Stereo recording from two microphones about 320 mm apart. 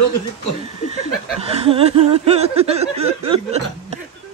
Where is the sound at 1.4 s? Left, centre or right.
Centre.